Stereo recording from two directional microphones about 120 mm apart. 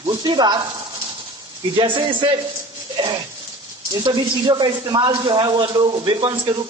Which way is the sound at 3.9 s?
35° right (ahead or behind).